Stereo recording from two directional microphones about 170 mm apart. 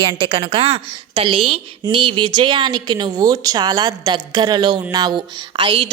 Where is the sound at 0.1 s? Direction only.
30° right (ahead or behind).